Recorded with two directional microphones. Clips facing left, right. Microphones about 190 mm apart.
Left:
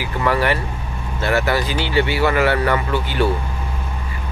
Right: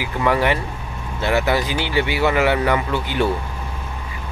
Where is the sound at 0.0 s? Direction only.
15° right (ahead or behind).